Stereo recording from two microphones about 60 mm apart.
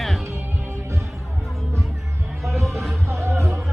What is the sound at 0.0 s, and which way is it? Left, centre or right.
Music, centre.